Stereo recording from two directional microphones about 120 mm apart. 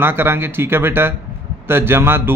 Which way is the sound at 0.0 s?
20° right (ahead or behind).